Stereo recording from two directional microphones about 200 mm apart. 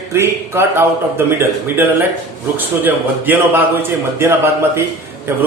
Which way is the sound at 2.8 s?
10° right (ahead or behind).